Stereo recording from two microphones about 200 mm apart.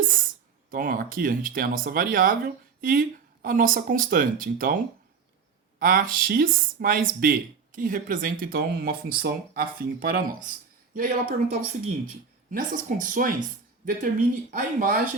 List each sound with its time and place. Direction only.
0.0 s speech: 45° right (ahead or behind)
5.8 s speech: 45° right (ahead or behind)
12.5 s speech: 40° right (ahead or behind)